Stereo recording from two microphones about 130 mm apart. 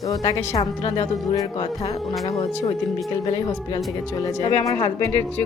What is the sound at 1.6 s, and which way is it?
Music, 35° left (ahead or behind).